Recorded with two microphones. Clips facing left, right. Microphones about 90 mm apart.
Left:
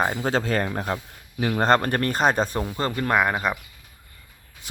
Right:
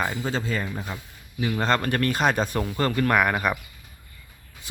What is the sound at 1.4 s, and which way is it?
Speech, 45° left (ahead or behind).